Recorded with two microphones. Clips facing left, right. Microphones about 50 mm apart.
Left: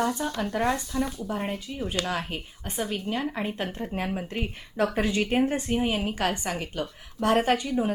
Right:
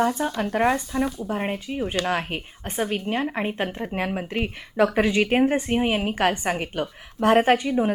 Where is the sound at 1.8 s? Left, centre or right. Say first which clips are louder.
Right 4 dB; right.